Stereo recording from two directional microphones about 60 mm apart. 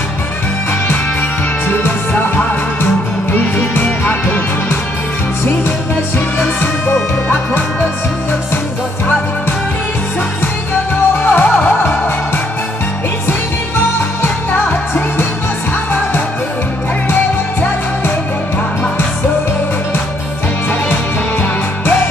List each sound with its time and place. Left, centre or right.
1.7 s music: left
5.4 s music: left
11.3 s music: left
13.7 s music: left
17.1 s music: left
20.9 s music: left